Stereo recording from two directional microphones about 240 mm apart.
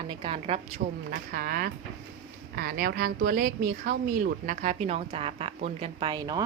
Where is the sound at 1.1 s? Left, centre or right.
Right.